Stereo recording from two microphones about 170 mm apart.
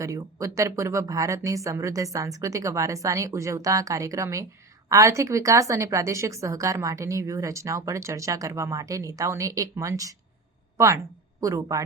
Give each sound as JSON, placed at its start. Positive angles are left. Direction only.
{"t": 0.0, "sound": "a woman's voice", "side_deg": -20}
{"t": 11.3, "sound": "a woman's voice", "side_deg": -20}